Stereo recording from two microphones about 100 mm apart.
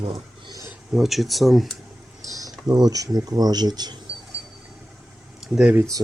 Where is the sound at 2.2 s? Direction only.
35° right (ahead or behind).